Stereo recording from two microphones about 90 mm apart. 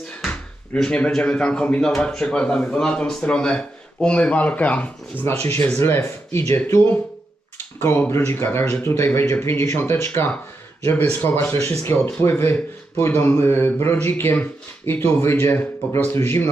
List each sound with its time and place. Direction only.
0.2 s speech: 10° left (ahead or behind)
5.2 s speech: 25° left (ahead or behind)